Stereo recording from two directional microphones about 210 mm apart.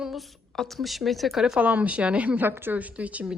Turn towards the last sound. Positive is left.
turn(degrees=-5)  # may be behind; listen again after turning